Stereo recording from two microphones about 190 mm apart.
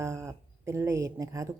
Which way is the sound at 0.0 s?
15° right (ahead or behind).